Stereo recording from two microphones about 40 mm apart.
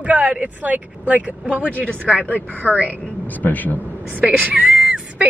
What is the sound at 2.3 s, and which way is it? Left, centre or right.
Speech, right.